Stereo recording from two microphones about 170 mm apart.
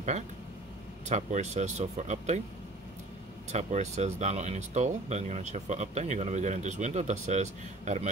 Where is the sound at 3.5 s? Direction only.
40° right (ahead or behind).